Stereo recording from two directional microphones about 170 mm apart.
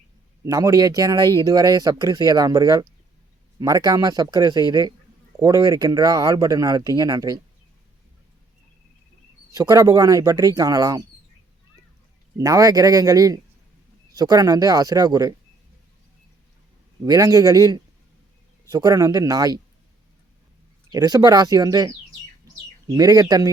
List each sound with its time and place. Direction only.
0.4 s speech: 20° right (ahead or behind)
9.6 s speech: 20° right (ahead or behind)
12.4 s speech: 20° right (ahead or behind)
17.1 s speech: 20° right (ahead or behind)
20.9 s speech: 20° right (ahead or behind)
22.4 s bird: 20° right (ahead or behind)